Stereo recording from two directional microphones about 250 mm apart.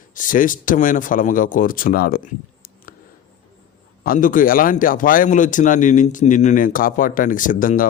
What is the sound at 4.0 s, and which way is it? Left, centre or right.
Speech, left.